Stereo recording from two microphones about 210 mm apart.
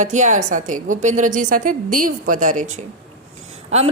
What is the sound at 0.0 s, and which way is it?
A woman's voice, 35° right (ahead or behind).